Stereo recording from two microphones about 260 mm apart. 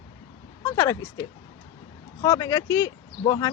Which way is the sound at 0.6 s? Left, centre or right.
Centre.